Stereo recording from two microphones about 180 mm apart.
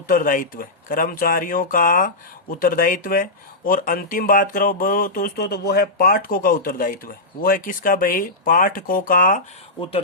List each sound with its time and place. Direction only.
0.1 s speech: 50° left (ahead or behind)